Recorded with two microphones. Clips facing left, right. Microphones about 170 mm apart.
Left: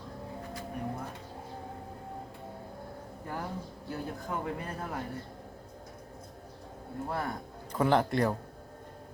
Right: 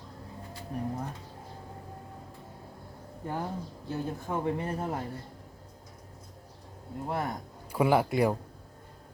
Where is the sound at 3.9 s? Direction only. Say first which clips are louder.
Right 3 dB; 25° right (ahead or behind).